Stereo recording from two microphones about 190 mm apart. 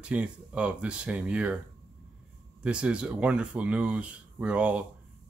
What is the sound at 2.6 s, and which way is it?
Speech, 5° right (ahead or behind).